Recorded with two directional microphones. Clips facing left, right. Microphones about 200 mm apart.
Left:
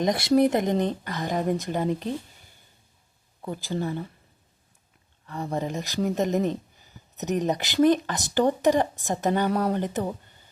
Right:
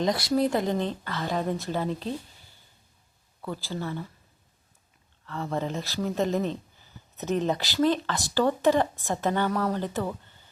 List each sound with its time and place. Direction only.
0.0 s speech: 20° left (ahead or behind)
3.4 s speech: 20° left (ahead or behind)
5.2 s speech: 15° left (ahead or behind)